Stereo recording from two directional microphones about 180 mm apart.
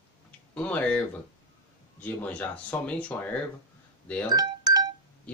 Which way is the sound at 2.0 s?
10° left (ahead or behind).